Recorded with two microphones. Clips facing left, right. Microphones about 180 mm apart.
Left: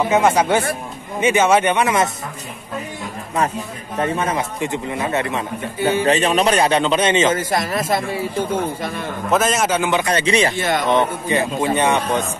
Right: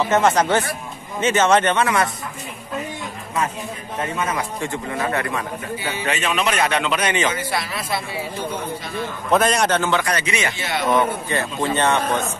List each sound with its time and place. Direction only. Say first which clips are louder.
0.1 s a man's voice: left 1 dB; 10° left (ahead or behind)
4.0 s a man's voice: left 4 dB; 35° left (ahead or behind)
4.6 s a man's voice: left 2 dB; 20° left (ahead or behind)
5.8 s a man's voice: left 10 dB; 50° left (ahead or behind)
6.0 s a man's voice: left 4 dB; 35° left (ahead or behind)
7.3 s a man's voice: left 5 dB; 45° left (ahead or behind)
9.3 s a man's voice: even; centre (ahead or behind); by 10.5 s 35° left (ahead or behind)
10.5 s a man's voice: left 5 dB; 50° left (ahead or behind)
11.0 s a man's voice: left 2 dB; 15° left (ahead or behind)